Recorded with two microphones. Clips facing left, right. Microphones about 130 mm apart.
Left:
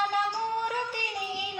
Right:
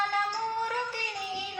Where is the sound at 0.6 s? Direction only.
15° left (ahead or behind).